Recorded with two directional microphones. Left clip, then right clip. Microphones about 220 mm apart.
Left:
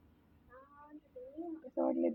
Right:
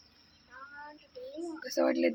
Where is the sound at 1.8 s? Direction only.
25° right (ahead or behind).